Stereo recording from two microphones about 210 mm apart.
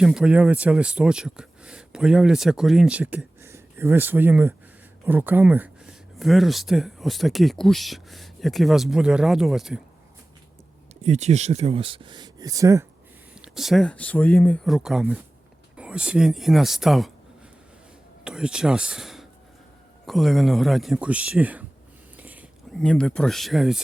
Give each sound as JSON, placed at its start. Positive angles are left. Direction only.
{"t": 0.0, "sound": "speech", "side_deg": -5}
{"t": 11.0, "sound": "speech", "side_deg": -30}
{"t": 13.3, "sound": "speech", "side_deg": -5}
{"t": 18.3, "sound": "speech", "side_deg": -5}
{"t": 22.2, "sound": "whispering", "side_deg": -10}
{"t": 22.7, "sound": "speech", "side_deg": 5}